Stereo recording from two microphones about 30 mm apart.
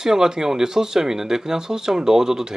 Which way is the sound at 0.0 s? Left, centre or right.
Right.